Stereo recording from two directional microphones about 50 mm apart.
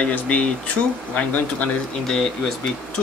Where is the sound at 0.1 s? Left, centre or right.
Left.